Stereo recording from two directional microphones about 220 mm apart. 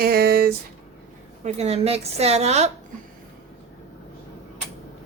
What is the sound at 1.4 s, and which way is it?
A woman's voice, 30° right (ahead or behind).